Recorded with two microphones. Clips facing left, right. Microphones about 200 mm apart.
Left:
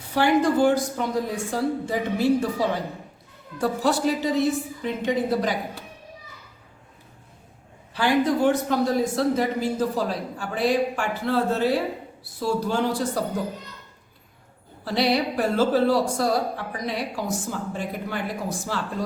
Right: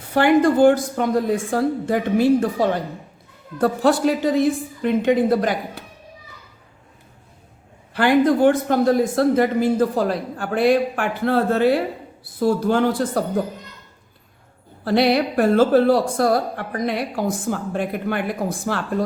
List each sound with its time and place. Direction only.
0.1 s a woman's voice: 55° right (ahead or behind)
7.9 s a woman's voice: 55° right (ahead or behind)
14.8 s a woman's voice: 55° right (ahead or behind)